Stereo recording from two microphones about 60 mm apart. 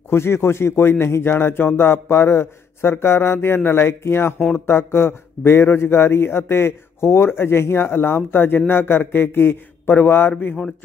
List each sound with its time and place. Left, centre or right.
0.1 s a man's voice: left